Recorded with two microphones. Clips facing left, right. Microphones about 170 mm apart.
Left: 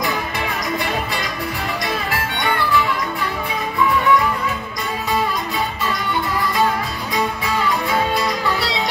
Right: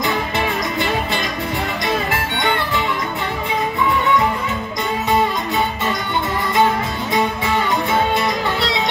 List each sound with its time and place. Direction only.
1.9 s music: 20° right (ahead or behind)
7.2 s music: 25° right (ahead or behind)